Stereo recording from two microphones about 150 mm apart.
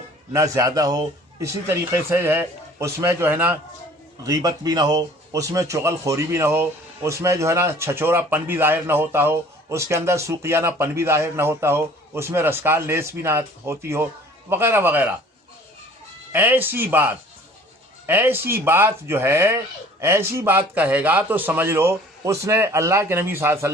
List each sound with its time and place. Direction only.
0.3 s speech: 20° right (ahead or behind)
4.2 s speech: 25° right (ahead or behind)
16.3 s speech: 15° right (ahead or behind)